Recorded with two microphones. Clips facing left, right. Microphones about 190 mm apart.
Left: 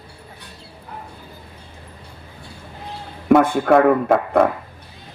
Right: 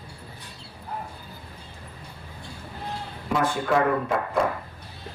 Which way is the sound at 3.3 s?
60° left (ahead or behind).